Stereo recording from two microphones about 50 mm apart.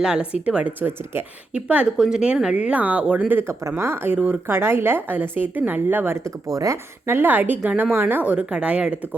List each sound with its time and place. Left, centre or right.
0.0 s speech: centre
0.8 s speech: right
1.5 s speech: right
2.0 s speech: centre
3.4 s speech: right
6.2 s speech: right
7.2 s a woman's voice: right